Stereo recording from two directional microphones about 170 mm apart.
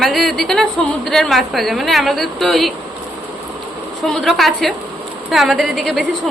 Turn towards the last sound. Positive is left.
turn(degrees=0)  # may be behind; listen again after turning